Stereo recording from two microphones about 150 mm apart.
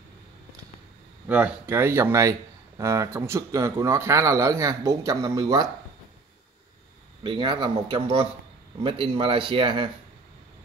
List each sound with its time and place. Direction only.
1.2 s speech: 10° right (ahead or behind)
7.2 s speech: 35° right (ahead or behind)